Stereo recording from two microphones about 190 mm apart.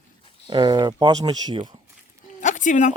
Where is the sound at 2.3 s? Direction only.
40° left (ahead or behind).